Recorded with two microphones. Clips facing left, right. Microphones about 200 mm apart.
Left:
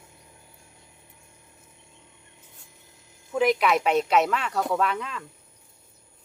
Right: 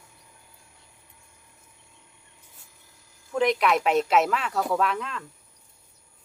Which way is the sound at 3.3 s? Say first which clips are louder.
Left 1 dB; 5° left (ahead or behind).